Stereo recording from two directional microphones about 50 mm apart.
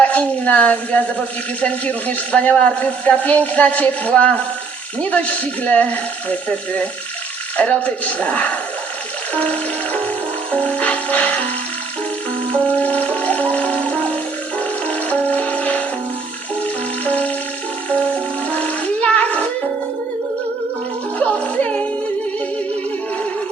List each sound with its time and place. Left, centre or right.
0.0 s a man's voice: left
12.6 s music: left
17.1 s music: left
21.4 s music: left